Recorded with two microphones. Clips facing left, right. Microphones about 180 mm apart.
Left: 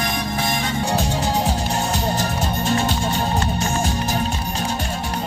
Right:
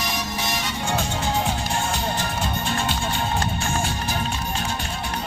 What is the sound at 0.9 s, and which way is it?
Music, 35° left (ahead or behind).